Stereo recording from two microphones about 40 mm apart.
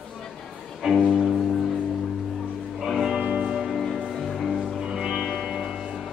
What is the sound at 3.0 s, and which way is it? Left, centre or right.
Music, right.